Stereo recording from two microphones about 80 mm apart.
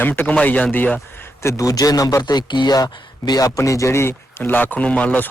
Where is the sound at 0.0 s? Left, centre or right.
Left.